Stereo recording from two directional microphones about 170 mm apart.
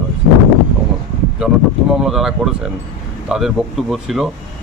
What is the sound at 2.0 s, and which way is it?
Speech, 5° right (ahead or behind).